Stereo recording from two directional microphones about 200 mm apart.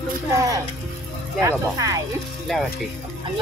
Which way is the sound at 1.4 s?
15° right (ahead or behind).